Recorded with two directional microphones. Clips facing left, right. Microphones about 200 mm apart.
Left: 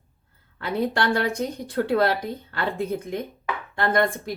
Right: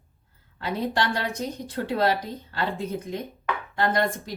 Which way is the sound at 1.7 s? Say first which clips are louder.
Left 3 dB; 55° left (ahead or behind).